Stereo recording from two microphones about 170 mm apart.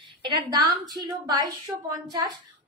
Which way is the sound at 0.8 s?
25° right (ahead or behind).